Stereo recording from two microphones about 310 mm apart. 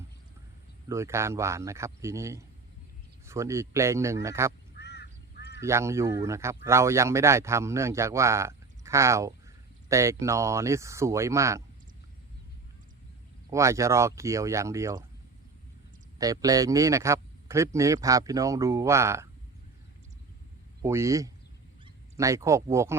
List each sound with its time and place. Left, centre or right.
0.9 s a man's voice: centre
4.7 s crow: left
5.5 s a man's voice: centre
13.5 s a man's voice: centre
16.1 s a man's voice: centre
20.8 s a man's voice: centre